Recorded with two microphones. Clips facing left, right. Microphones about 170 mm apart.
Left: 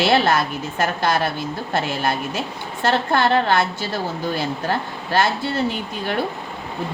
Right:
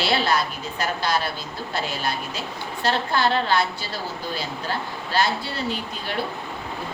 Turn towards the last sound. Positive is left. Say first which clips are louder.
# left 5 dB
turn(degrees=55)  # may be behind; listen again after turning